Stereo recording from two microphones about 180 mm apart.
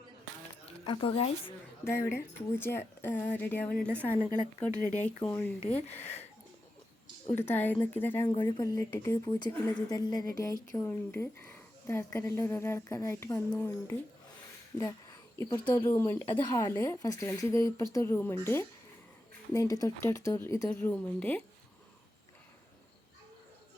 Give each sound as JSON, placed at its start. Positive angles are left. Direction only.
{"t": 0.6, "sound": "a woman's voice", "side_deg": 30}
{"t": 1.8, "sound": "a woman's voice", "side_deg": 15}
{"t": 4.9, "sound": "a woman's voice", "side_deg": 5}
{"t": 6.0, "sound": "speech", "side_deg": 40}
{"t": 7.3, "sound": "a woman's voice", "side_deg": 10}
{"t": 8.3, "sound": "a woman's voice", "side_deg": 25}